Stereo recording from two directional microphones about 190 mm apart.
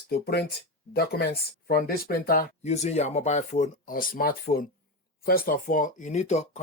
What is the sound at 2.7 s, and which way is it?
Speech, 35° left (ahead or behind).